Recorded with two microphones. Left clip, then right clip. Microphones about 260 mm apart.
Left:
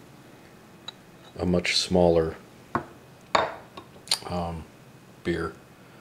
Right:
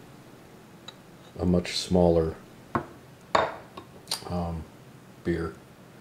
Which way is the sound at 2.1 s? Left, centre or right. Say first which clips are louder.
Left 2 dB; centre.